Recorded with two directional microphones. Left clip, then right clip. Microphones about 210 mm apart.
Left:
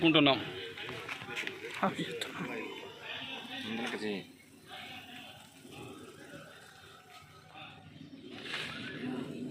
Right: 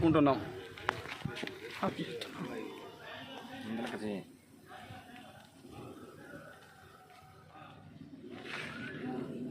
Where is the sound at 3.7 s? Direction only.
25° right (ahead or behind).